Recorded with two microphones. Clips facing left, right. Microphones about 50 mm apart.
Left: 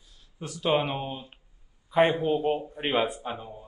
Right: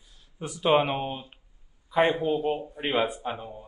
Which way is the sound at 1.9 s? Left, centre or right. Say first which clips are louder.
Left 1 dB; left.